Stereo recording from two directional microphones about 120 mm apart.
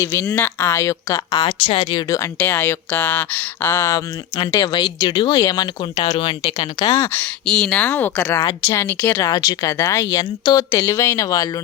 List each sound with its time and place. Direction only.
0.0 s speech: 20° left (ahead or behind); by 2.0 s 40° left (ahead or behind)
2.0 s speech: 25° left (ahead or behind)
2.4 s speech: 15° left (ahead or behind)
3.8 s speech: 30° left (ahead or behind)
6.6 s speech: 35° left (ahead or behind)
7.4 s speech: centre (ahead or behind)
7.8 s speech: 15° left (ahead or behind)
8.4 s speech: 30° left (ahead or behind)